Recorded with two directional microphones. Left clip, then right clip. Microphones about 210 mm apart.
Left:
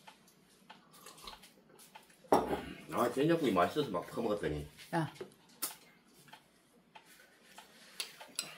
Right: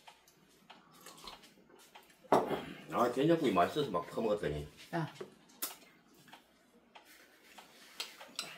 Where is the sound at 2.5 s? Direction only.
10° right (ahead or behind).